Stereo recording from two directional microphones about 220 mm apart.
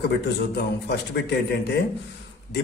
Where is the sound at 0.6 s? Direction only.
50° left (ahead or behind).